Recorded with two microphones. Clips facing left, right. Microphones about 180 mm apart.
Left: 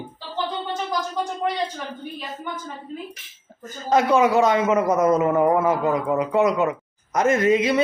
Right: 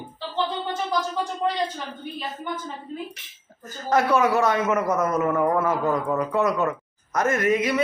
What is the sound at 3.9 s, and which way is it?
A man's voice, 20° left (ahead or behind).